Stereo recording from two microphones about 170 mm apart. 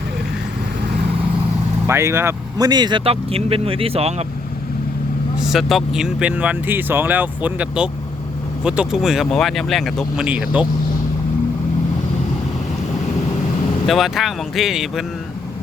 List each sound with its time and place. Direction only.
1.9 s speech: 15° right (ahead or behind); by 4.3 s 35° right (ahead or behind)
5.4 s speech: centre (ahead or behind)
13.8 s speech: centre (ahead or behind)